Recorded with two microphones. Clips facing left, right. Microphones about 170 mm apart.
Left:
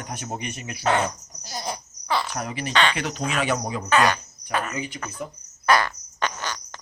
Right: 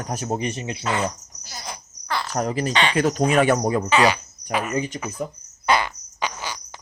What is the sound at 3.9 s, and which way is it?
Speech, 10° right (ahead or behind).